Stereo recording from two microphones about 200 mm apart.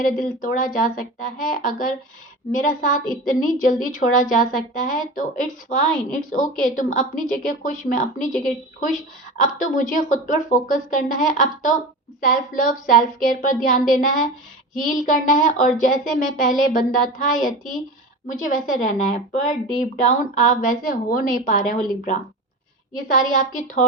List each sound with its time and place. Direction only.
0.0 s a woman's voice: 40° left (ahead or behind)
18.3 s a woman's voice: 40° left (ahead or behind)